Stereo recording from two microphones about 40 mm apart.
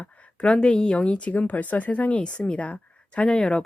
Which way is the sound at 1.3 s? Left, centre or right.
Left.